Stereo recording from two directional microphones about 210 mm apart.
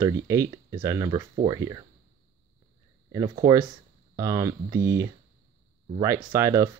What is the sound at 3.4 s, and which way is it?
Speech, 15° right (ahead or behind).